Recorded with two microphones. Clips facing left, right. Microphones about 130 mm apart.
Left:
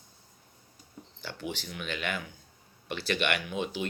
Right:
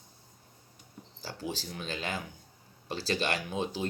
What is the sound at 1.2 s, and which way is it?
Speech, 30° right (ahead or behind).